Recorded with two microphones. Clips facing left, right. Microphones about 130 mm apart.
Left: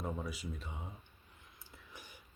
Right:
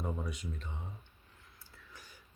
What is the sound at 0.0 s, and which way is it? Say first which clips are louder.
Speech: right 1 dB; centre (ahead or behind).